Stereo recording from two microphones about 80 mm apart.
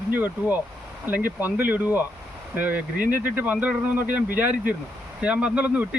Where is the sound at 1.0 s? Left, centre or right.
Right.